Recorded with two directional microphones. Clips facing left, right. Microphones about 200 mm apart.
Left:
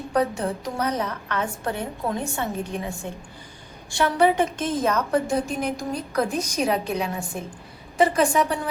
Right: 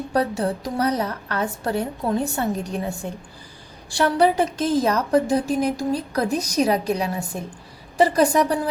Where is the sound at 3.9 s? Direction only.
35° right (ahead or behind).